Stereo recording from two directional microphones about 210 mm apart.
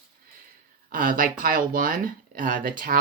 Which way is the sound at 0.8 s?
40° right (ahead or behind).